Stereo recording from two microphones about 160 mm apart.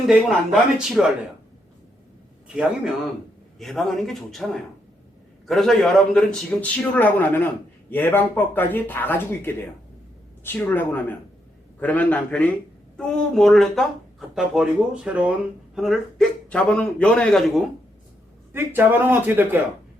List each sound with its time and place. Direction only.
0.0 s speech: centre (ahead or behind)
3.6 s a man's voice: centre (ahead or behind)
18.5 s speech: 10° right (ahead or behind)